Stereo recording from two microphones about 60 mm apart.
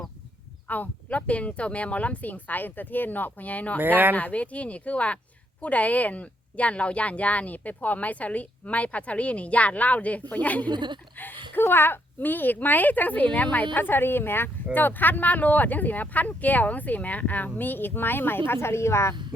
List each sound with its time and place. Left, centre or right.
0.7 s speech: left
3.8 s speech: right
4.1 s speech: left